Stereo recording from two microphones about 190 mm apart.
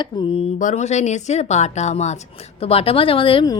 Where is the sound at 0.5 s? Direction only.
40° left (ahead or behind).